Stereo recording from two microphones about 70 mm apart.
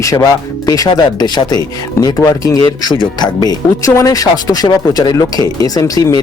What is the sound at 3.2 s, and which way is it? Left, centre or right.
Speech, left.